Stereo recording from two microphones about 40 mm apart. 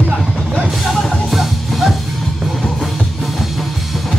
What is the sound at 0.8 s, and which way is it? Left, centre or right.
Music, centre.